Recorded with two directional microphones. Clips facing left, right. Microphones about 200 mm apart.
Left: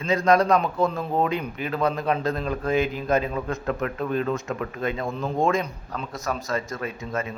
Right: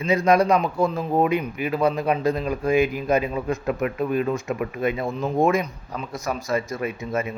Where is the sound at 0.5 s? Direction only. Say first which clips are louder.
Right 1 dB; centre (ahead or behind).